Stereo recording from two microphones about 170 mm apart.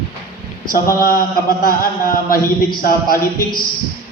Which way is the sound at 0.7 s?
55° left (ahead or behind).